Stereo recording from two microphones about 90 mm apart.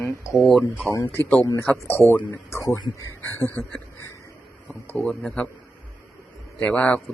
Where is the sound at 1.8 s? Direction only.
25° left (ahead or behind).